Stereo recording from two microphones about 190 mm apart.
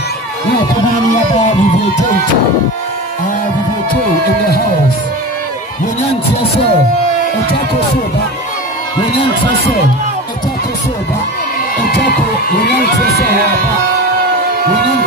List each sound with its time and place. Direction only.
1.4 s speech: 40° left (ahead or behind)
12.0 s heart murmur: 60° left (ahead or behind)